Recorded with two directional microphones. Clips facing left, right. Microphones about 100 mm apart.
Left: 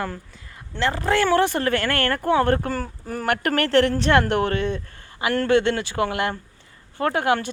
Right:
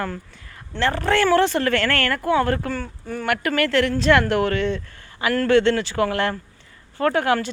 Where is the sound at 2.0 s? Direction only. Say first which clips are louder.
Left 1 dB; 35° left (ahead or behind).